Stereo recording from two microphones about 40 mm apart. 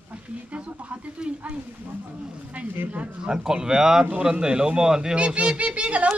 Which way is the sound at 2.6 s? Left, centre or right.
Right.